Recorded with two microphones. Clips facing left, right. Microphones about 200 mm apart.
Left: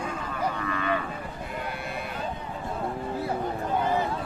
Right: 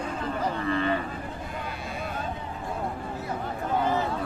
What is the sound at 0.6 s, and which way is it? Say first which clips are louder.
Cattle: right 3 dB; 30° right (ahead or behind).